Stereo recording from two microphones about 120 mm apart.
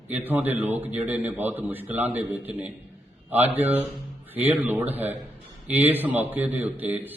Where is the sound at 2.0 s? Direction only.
65° right (ahead or behind).